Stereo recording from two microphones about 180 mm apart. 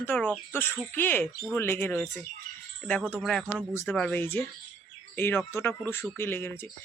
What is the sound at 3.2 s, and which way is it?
Speech, centre (ahead or behind).